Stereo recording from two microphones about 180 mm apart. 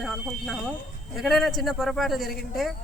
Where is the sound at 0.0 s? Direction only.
Centre (ahead or behind).